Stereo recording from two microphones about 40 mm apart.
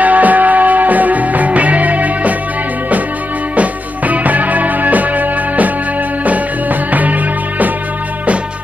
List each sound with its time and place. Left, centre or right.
0.0 s music: right
3.5 s music: right